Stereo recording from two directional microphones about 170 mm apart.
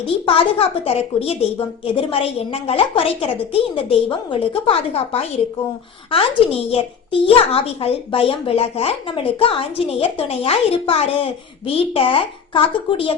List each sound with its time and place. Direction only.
0.9 s speech: 35° left (ahead or behind)